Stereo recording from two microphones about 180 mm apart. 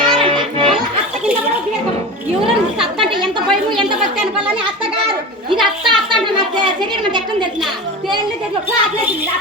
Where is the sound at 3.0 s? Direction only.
25° right (ahead or behind).